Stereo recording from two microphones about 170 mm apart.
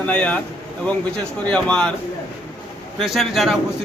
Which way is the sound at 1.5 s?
5° left (ahead or behind).